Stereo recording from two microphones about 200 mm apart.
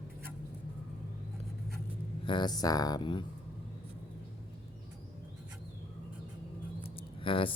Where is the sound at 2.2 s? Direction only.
20° left (ahead or behind).